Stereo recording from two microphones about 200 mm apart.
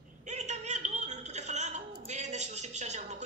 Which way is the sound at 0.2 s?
35° right (ahead or behind).